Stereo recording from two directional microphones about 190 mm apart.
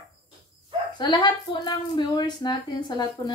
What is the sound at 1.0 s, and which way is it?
Speech, 25° left (ahead or behind).